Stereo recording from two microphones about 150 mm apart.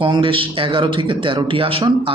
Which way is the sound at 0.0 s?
35° right (ahead or behind).